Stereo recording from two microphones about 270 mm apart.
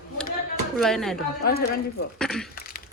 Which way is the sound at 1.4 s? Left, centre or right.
Left.